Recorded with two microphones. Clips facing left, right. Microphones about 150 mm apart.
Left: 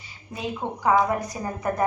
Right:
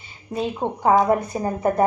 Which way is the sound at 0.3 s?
35° right (ahead or behind).